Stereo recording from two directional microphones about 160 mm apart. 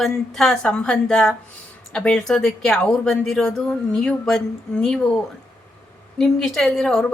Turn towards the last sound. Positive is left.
turn(degrees=0)  # may be behind; listen again after turning